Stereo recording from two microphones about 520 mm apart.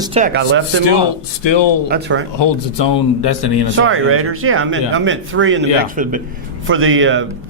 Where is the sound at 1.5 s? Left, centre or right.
Left.